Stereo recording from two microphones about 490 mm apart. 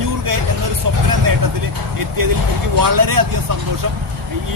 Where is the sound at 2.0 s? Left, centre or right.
Right.